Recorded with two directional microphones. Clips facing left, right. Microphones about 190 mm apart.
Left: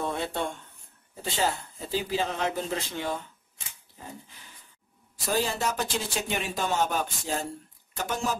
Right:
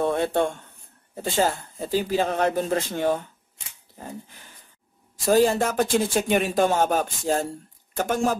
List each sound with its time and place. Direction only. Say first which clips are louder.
0.0 s speech: right 8 dB; 55° right (ahead or behind)
5.2 s speech: right 9 dB; 45° right (ahead or behind)